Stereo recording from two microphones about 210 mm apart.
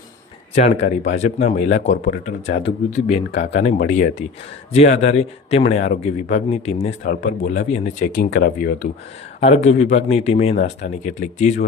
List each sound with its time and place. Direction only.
0.5 s speech: 30° left (ahead or behind)
9.4 s speech: 30° left (ahead or behind)